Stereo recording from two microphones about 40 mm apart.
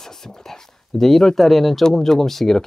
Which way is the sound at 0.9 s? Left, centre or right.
Centre.